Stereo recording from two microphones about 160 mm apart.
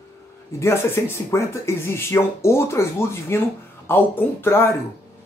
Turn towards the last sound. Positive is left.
turn(degrees=15)  # may be behind; listen again after turning